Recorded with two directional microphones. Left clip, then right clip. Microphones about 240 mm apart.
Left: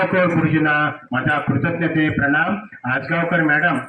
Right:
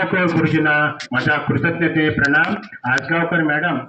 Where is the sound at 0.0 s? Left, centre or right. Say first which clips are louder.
Even; left.